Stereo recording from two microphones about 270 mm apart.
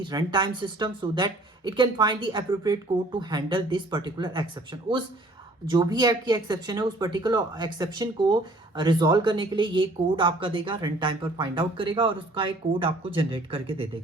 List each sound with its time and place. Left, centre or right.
0.0 s speech: centre